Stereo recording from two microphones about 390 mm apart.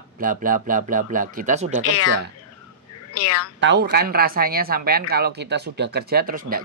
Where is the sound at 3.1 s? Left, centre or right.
Left.